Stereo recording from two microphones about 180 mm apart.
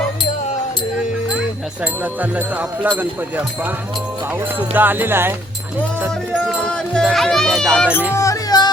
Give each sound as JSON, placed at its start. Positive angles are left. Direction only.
{"t": 2.3, "sound": "speech", "side_deg": -10}
{"t": 6.6, "sound": "speech", "side_deg": 5}
{"t": 8.1, "sound": "music", "side_deg": 15}